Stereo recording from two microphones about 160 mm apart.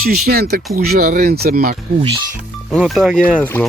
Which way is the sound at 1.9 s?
30° right (ahead or behind).